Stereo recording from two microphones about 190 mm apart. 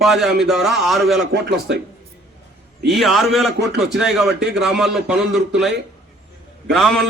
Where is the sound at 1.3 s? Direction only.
60° right (ahead or behind).